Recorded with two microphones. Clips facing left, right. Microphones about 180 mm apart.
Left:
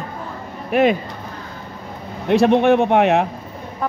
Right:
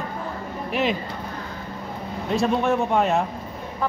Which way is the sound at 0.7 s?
55° left (ahead or behind).